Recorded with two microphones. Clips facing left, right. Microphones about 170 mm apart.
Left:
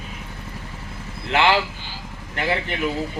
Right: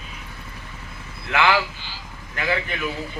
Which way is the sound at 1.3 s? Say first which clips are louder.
Left 1 dB; 25° left (ahead or behind).